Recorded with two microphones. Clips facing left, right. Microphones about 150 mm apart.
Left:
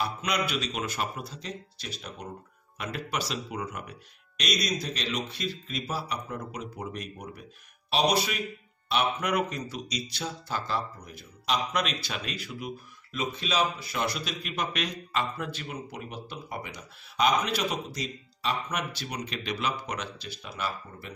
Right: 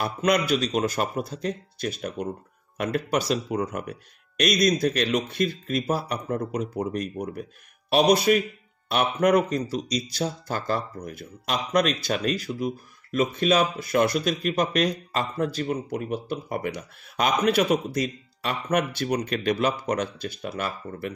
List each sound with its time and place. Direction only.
0.0 s speech: 50° right (ahead or behind)
13.2 s speech: 50° right (ahead or behind)